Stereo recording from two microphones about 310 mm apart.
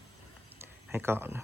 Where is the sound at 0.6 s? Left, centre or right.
Centre.